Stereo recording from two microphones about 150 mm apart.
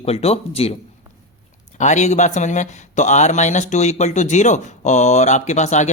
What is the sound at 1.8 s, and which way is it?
Speech, 50° left (ahead or behind).